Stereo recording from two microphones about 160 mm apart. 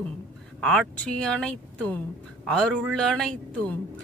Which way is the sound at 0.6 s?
5° left (ahead or behind).